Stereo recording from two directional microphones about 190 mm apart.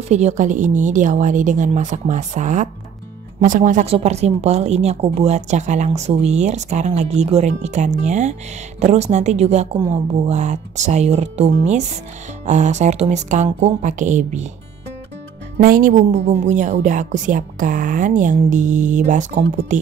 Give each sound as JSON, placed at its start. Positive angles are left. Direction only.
{"t": 0.1, "sound": "speech", "side_deg": -35}
{"t": 15.5, "sound": "speech", "side_deg": -45}